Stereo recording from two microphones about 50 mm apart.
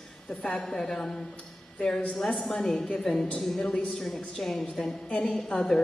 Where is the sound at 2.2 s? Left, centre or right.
Centre.